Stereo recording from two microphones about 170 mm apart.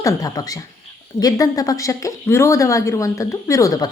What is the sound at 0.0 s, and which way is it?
A woman's voice, 20° left (ahead or behind).